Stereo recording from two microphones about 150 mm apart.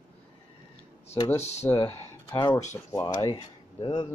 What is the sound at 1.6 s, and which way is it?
Speech, 20° left (ahead or behind).